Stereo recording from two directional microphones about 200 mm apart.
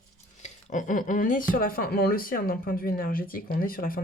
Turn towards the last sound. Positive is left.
turn(degrees=45)  # may be behind; listen again after turning